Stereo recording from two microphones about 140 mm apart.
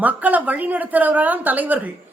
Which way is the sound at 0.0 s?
10° right (ahead or behind).